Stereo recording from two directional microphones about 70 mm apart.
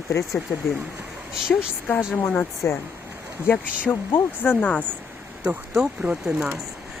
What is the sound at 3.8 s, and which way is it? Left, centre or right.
Speech, left.